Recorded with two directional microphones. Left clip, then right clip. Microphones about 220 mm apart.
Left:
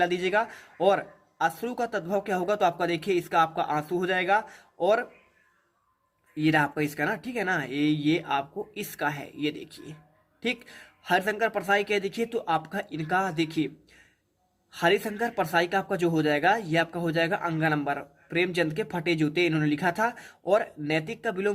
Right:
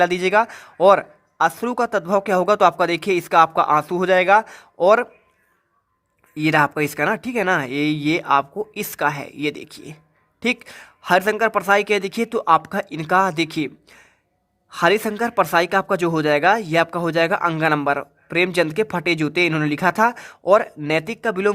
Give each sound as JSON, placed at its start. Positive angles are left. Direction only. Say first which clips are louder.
{"t": 0.0, "sound": "speech", "louder": "right 8 dB", "side_deg": -55}
{"t": 6.3, "sound": "speech", "louder": "right 7 dB", "side_deg": -50}